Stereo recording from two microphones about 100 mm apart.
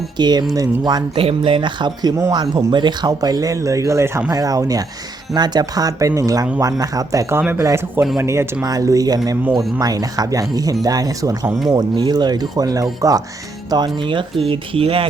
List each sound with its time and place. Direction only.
0.2 s speech: 45° right (ahead or behind)
1.1 s speech: 65° right (ahead or behind)
14.4 s speech: 65° right (ahead or behind)